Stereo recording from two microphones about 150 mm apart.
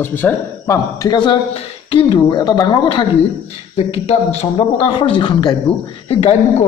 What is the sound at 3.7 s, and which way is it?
A man's voice, 45° left (ahead or behind).